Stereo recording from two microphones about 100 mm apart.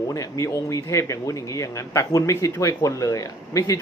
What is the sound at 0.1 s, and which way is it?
Speech, 35° left (ahead or behind).